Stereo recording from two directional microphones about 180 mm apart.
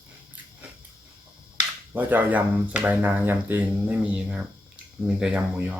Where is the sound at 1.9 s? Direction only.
10° right (ahead or behind).